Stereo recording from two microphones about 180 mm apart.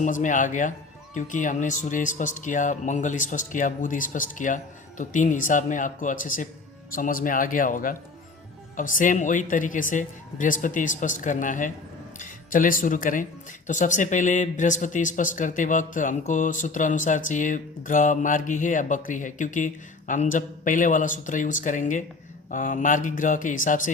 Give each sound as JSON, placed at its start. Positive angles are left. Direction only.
{"t": 0.0, "sound": "speech", "side_deg": 45}